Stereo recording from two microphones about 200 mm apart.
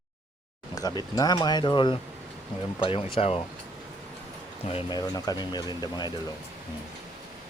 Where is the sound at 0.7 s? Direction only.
20° left (ahead or behind).